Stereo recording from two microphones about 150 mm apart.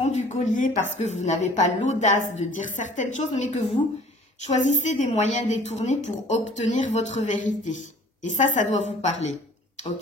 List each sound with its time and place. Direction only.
0.0 s a woman's voice: 50° left (ahead or behind)